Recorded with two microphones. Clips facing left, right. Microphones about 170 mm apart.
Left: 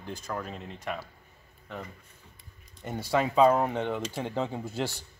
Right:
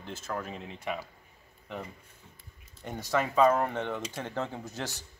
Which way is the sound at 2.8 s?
5° left (ahead or behind).